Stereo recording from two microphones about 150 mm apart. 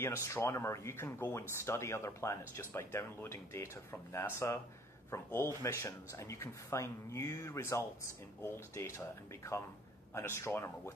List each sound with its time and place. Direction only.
0.0 s speech: 20° left (ahead or behind)